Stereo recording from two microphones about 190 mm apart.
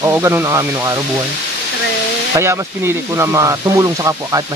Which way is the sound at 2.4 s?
15° right (ahead or behind).